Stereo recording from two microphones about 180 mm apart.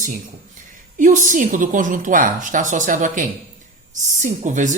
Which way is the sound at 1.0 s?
45° right (ahead or behind).